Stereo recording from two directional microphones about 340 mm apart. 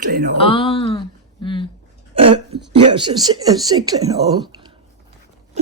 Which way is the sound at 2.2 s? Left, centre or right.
Centre.